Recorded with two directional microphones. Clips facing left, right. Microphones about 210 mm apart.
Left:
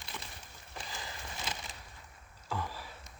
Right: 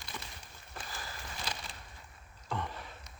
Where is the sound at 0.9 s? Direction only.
20° left (ahead or behind).